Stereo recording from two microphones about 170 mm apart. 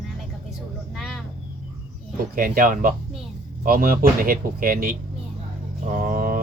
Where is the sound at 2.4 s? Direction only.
55° right (ahead or behind).